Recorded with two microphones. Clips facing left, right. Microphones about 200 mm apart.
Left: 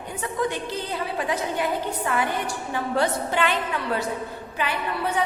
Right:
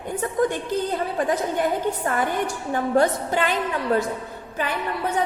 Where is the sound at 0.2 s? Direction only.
45° right (ahead or behind).